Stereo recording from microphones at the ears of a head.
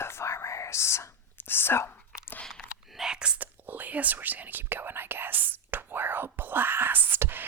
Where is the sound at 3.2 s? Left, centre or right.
Right.